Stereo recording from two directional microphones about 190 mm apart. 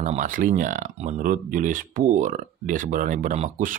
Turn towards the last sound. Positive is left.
turn(degrees=-40)  # may be behind; listen again after turning